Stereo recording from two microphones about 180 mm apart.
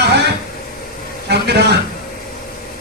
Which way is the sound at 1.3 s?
65° right (ahead or behind).